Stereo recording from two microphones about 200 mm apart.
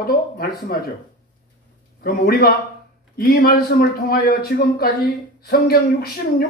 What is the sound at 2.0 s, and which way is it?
Speech, 50° left (ahead or behind).